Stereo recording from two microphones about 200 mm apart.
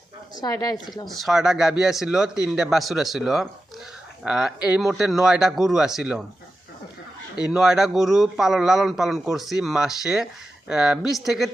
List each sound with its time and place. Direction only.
0.3 s a woman's voice: 20° left (ahead or behind)
1.0 s a man's voice: centre (ahead or behind)
7.3 s a man's voice: 5° right (ahead or behind)